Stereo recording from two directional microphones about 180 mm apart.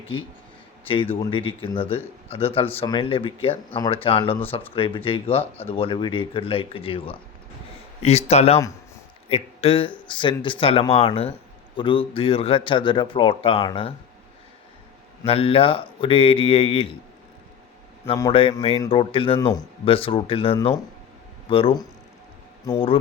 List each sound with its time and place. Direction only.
0.1 s speech: 30° left (ahead or behind)
15.3 s speech: 30° left (ahead or behind)
18.2 s speech: 30° left (ahead or behind)
19.4 s speech: 20° left (ahead or behind)
19.8 s speech: 30° left (ahead or behind)